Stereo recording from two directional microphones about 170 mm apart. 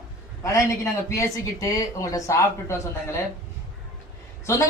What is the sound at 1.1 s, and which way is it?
A man's voice, 20° left (ahead or behind).